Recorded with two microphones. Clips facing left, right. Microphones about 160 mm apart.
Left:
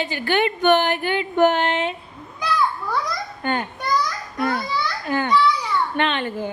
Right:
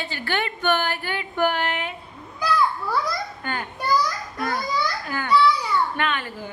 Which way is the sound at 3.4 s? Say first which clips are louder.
Left 4 dB; 25° left (ahead or behind).